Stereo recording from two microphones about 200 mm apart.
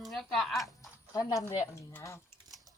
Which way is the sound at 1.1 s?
20° left (ahead or behind).